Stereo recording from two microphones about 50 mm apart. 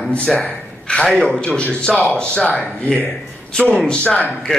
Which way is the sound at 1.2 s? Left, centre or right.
Centre.